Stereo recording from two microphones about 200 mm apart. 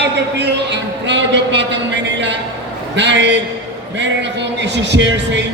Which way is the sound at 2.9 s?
60° right (ahead or behind).